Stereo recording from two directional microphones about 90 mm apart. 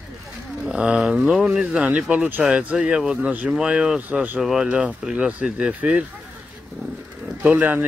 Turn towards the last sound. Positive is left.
turn(degrees=-25)  # may be behind; listen again after turning